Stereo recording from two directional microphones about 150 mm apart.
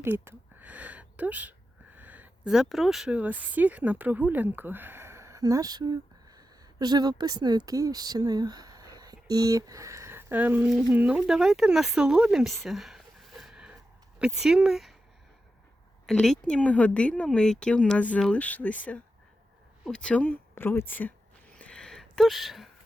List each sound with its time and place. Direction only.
0.0 s speech: 15° right (ahead or behind)
12.6 s a sound: centre (ahead or behind)
14.3 s speech: 5° right (ahead or behind)
16.0 s speech: 5° left (ahead or behind)
19.8 s speech: 5° left (ahead or behind)
21.5 s a sound: 5° left (ahead or behind)